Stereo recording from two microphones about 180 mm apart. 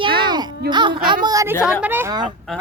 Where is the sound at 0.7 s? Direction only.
25° right (ahead or behind).